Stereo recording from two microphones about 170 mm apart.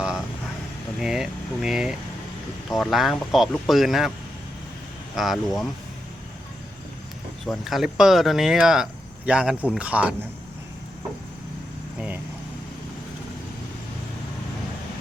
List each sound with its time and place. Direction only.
0.9 s speech: 5° right (ahead or behind)
5.1 s speech: centre (ahead or behind)
7.4 s speech: centre (ahead or behind)
11.9 s vehicle: 10° right (ahead or behind)